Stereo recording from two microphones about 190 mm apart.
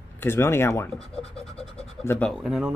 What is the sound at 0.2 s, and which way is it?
Speech, 10° left (ahead or behind).